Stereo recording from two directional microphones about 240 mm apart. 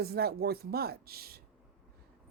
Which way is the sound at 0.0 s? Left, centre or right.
Right.